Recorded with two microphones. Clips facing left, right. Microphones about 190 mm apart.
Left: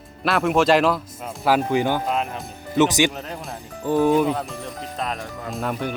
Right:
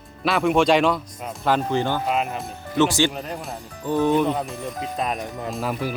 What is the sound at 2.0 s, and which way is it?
Speech, 5° right (ahead or behind).